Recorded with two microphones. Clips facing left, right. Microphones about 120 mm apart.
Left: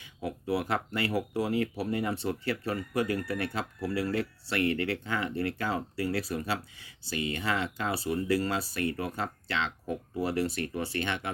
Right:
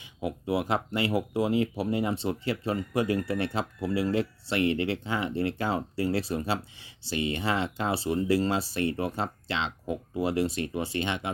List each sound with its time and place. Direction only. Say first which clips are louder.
0.0 s speech: right 3 dB; 20° right (ahead or behind)